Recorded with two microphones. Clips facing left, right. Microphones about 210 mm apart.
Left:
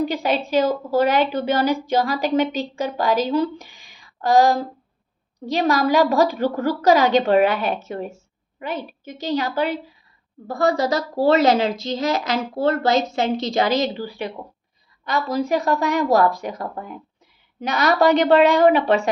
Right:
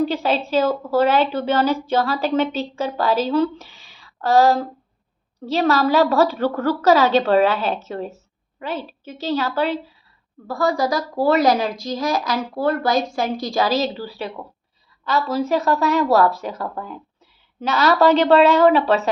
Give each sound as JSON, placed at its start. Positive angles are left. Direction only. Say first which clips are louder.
{"t": 0.0, "sound": "a woman's voice", "louder": "right 1 dB", "side_deg": 15}
{"t": 5.6, "sound": "a woman's voice", "louder": "right 1 dB", "side_deg": 15}